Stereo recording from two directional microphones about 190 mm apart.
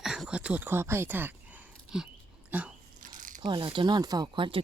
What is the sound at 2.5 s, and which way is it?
Speech, 10° right (ahead or behind).